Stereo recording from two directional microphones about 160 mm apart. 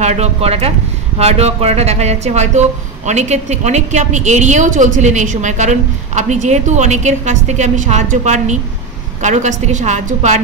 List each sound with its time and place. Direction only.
0.0 s a woman's voice: 45° right (ahead or behind)